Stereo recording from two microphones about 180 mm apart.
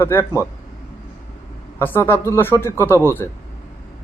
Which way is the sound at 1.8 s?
15° left (ahead or behind).